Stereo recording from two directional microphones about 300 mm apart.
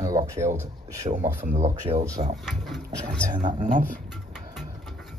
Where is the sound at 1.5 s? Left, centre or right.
Right.